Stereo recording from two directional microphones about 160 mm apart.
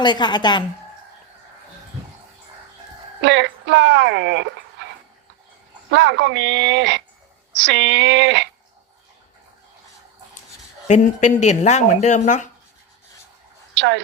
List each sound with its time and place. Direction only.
0.0 s speech: 30° left (ahead or behind)
3.2 s speech: 90° right
5.9 s speech: 90° right
10.8 s speech: 50° left (ahead or behind)
13.7 s speech: 90° right